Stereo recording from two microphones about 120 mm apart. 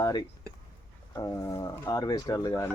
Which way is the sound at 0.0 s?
35° left (ahead or behind).